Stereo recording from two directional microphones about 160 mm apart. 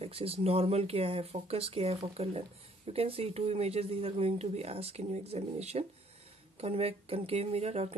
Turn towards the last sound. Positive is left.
turn(degrees=-40)  # may be behind; listen again after turning